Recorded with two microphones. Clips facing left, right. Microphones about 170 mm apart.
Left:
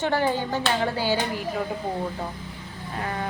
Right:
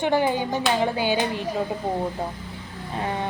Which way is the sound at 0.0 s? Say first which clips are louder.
Right 2 dB; 15° right (ahead or behind).